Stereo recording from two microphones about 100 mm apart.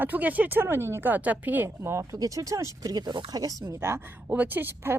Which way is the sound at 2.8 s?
45° right (ahead or behind).